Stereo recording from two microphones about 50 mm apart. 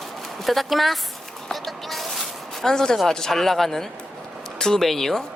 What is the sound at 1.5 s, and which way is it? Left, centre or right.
Music, centre.